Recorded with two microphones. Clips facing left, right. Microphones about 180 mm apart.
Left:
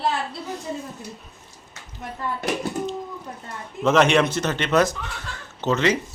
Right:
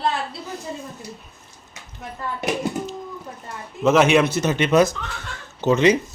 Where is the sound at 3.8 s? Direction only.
5° right (ahead or behind).